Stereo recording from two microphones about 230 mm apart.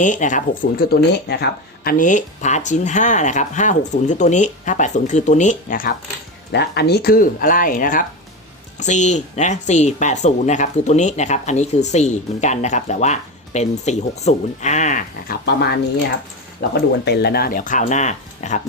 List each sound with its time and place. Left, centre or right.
0.0 s speech: left